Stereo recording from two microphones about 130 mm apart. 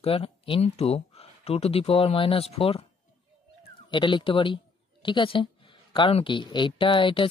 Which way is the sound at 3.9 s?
40° left (ahead or behind).